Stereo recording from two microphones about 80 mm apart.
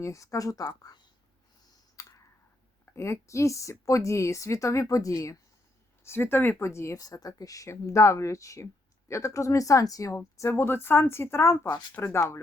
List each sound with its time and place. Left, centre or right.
0.0 s speech: left
2.0 s clicking: left
2.9 s speech: left
6.1 s speech: left
7.0 s speech: left